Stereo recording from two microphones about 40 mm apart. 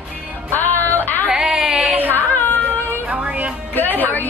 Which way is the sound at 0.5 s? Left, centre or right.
Left.